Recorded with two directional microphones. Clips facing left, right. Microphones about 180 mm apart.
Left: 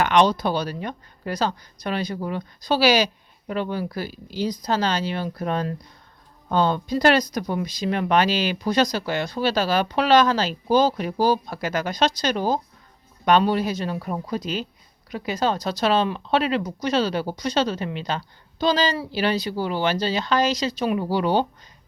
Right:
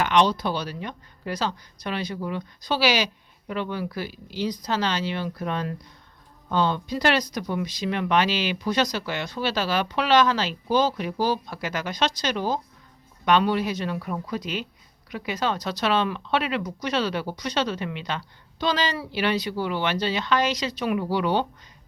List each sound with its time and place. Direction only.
0.0 s speech: 50° left (ahead or behind)